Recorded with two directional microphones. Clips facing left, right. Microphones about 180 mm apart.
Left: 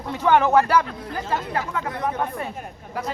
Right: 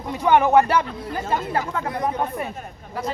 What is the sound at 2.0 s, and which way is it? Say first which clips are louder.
Speech: right 1 dB; 15° right (ahead or behind).